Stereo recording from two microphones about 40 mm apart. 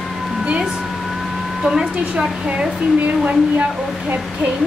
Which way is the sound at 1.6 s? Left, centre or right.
Centre.